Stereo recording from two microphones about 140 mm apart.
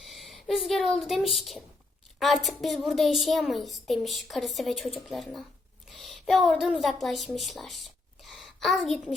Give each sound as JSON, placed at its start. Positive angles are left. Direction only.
{"t": 0.0, "sound": "a woman's voice", "side_deg": 0}
{"t": 5.9, "sound": "a sound", "side_deg": 0}
{"t": 6.6, "sound": "speech", "side_deg": -5}